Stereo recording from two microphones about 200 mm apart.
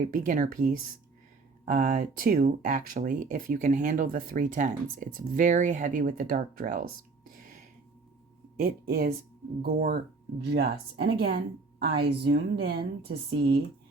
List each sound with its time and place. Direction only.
0.1 s a woman's voice: 40° right (ahead or behind)
8.5 s a woman's voice: 45° right (ahead or behind)